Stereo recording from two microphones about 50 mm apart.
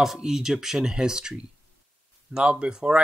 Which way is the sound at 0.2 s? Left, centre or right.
Centre.